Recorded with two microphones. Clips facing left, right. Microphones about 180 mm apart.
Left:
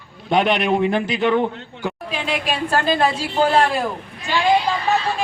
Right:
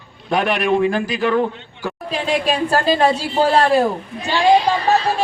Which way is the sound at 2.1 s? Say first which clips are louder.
Right 6 dB; 40° right (ahead or behind).